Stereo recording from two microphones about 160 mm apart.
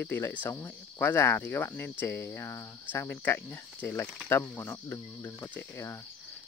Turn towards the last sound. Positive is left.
turn(degrees=15)  # may be behind; listen again after turning